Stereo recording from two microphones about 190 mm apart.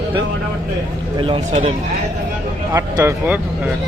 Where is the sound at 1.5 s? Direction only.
35° right (ahead or behind).